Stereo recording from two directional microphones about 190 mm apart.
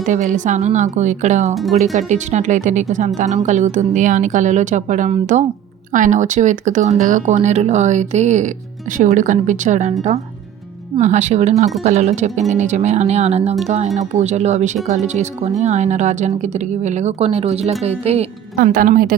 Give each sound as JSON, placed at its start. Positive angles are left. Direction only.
{"t": 0.0, "sound": "speech", "side_deg": -40}
{"t": 1.5, "sound": "speech", "side_deg": 0}
{"t": 1.8, "sound": "speech", "side_deg": -40}
{"t": 10.9, "sound": "speech", "side_deg": -40}
{"t": 18.6, "sound": "a woman's voice", "side_deg": -45}